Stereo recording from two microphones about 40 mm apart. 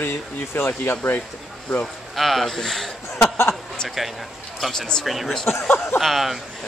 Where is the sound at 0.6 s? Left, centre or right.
Left.